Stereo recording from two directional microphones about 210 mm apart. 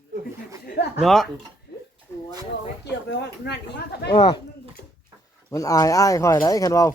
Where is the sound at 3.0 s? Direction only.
55° left (ahead or behind).